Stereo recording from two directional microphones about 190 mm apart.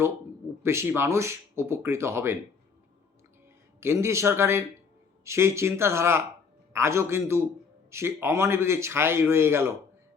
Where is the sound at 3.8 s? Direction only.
15° right (ahead or behind).